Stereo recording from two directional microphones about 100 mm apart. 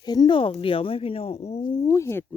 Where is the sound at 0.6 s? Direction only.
65° left (ahead or behind); by 1.6 s 90° left.